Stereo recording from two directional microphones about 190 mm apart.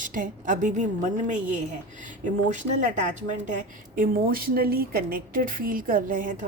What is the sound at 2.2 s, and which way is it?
A woman's voice, 40° right (ahead or behind).